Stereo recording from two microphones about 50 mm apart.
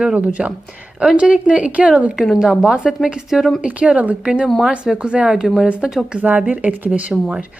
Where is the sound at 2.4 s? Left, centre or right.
Centre.